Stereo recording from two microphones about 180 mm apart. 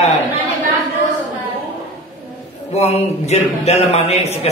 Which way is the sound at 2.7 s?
35° left (ahead or behind).